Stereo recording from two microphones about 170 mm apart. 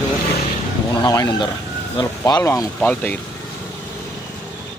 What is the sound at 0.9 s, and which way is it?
A man's voice, 25° left (ahead or behind).